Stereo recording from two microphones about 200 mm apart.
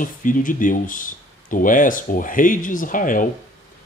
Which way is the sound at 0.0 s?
40° left (ahead or behind).